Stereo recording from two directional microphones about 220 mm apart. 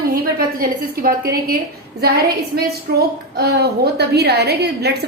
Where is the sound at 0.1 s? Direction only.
40° right (ahead or behind).